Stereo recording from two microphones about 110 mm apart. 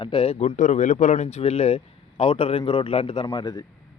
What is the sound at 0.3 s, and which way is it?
Speech, 85° left.